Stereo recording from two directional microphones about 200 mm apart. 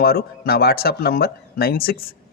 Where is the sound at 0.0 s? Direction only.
50° left (ahead or behind).